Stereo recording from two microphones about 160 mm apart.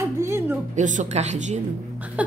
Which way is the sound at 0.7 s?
50° right (ahead or behind).